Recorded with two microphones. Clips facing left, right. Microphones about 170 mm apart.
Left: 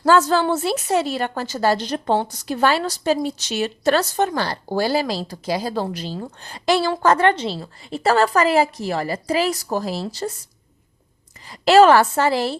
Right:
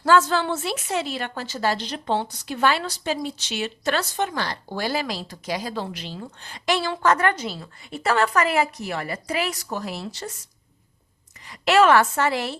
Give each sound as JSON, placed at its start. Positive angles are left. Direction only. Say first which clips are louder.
{"t": 0.0, "sound": "a woman's voice", "louder": "left 3 dB", "side_deg": 40}
{"t": 11.4, "sound": "a woman's voice", "louder": "left 5 dB", "side_deg": 35}